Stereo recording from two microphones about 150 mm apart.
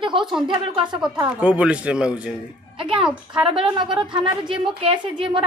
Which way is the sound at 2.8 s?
35° right (ahead or behind).